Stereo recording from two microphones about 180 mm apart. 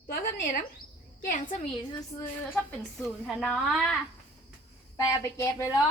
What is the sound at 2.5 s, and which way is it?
A woman's voice, centre (ahead or behind).